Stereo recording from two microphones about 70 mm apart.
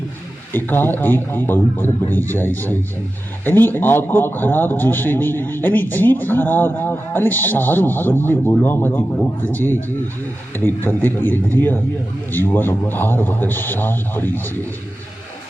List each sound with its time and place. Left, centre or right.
0.5 s a man's voice: left